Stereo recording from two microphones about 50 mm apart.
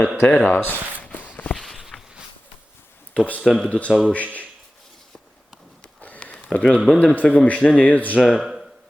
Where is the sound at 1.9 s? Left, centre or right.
Centre.